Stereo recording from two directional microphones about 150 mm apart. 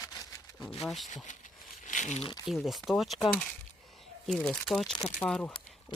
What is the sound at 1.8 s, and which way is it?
Crumpling, 55° left (ahead or behind).